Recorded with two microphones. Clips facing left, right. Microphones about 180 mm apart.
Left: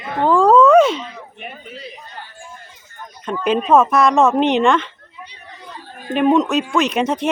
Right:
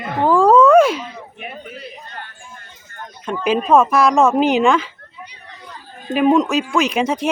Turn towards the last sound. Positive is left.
turn(degrees=0)  # may be behind; listen again after turning